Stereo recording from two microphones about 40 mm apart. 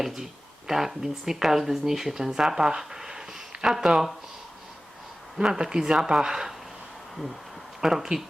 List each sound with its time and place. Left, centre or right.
0.0 s a sound: centre
0.7 s speech: centre
5.4 s speech: right
7.8 s speech: centre